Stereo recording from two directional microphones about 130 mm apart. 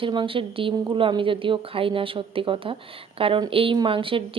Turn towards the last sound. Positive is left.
turn(degrees=-40)  # may be behind; listen again after turning